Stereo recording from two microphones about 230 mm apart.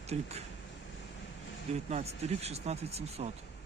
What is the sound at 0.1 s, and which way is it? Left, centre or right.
Speech, right.